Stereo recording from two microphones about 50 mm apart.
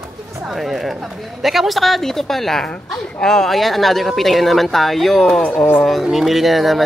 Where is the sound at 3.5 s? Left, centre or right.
Centre.